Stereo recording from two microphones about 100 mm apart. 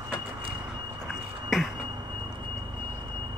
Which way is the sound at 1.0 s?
Centre (ahead or behind).